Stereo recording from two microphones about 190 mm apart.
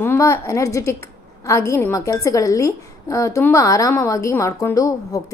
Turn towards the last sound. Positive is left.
turn(degrees=15)  # may be behind; listen again after turning